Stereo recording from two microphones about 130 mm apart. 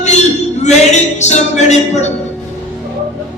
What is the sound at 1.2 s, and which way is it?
Music, 60° left (ahead or behind).